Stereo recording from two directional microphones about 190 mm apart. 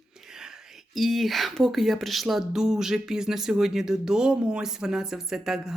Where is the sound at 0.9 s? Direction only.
Centre (ahead or behind).